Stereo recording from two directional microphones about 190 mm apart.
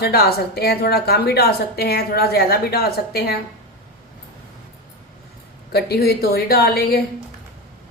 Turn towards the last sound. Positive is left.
turn(degrees=55)  # may be behind; listen again after turning